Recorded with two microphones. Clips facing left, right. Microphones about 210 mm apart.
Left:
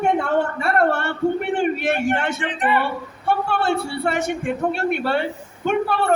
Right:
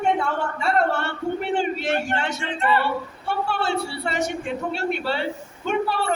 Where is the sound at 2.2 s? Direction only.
55° left (ahead or behind).